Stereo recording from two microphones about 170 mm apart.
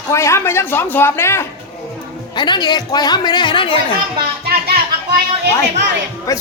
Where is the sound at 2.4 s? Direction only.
25° left (ahead or behind).